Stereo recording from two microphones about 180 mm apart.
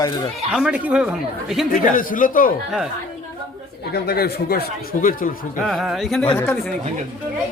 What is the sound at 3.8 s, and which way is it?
Speech, 60° left (ahead or behind).